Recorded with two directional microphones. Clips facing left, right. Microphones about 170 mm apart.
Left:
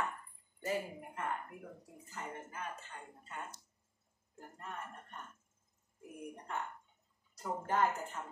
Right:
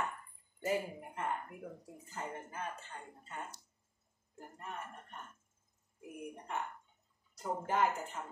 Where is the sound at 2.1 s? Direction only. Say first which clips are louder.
Right 2 dB; 30° right (ahead or behind).